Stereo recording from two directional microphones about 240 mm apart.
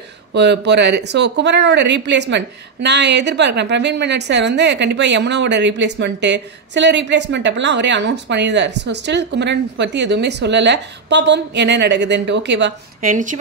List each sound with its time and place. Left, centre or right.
0.3 s speech: right
13.1 s speech: right